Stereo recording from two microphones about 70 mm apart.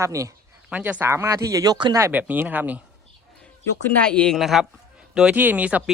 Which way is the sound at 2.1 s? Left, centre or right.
Right.